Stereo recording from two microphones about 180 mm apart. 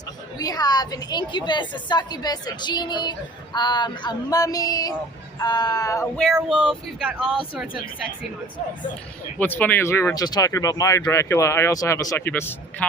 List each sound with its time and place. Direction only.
0.3 s a woman's voice: 20° left (ahead or behind)
6.1 s speech: 5° right (ahead or behind)
9.4 s speech: 10° left (ahead or behind)